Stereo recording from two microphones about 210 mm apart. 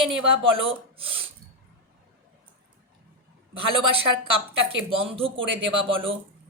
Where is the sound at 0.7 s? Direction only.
25° right (ahead or behind).